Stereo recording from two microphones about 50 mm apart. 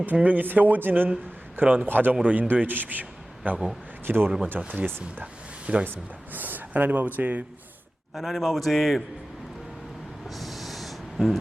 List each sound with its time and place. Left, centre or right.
0.1 s a man's voice: right
4.0 s a man's voice: right
4.6 s speech: right
4.9 s speech: right
5.2 s a sound: right
5.8 s speech: right
8.1 s a man's voice: centre
10.2 s snort: centre